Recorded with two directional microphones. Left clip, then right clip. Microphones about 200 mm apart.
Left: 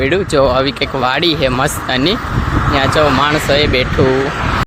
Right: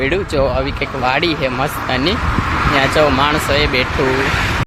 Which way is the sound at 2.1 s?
30° right (ahead or behind).